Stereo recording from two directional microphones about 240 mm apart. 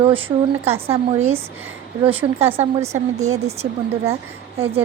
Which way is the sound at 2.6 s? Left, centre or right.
Right.